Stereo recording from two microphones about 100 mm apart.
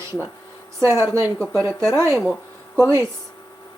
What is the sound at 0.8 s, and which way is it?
Speech, 25° right (ahead or behind).